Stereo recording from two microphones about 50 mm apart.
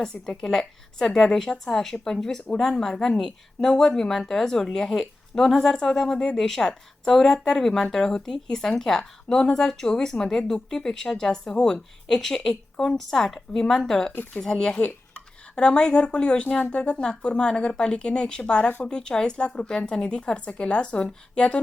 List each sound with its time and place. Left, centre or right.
0.0 s speech: centre